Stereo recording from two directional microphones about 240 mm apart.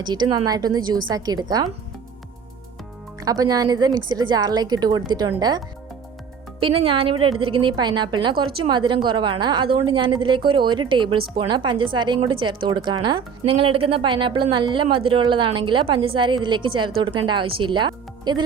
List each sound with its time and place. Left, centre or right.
0.0 s speech: centre
3.2 s a woman's voice: centre